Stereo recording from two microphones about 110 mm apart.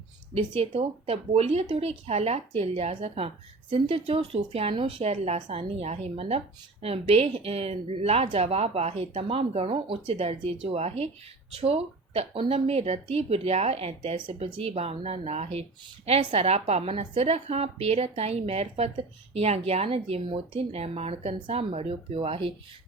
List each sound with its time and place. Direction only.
0.3 s a woman's voice: 65° right (ahead or behind)
4.7 s a woman's voice: 55° right (ahead or behind)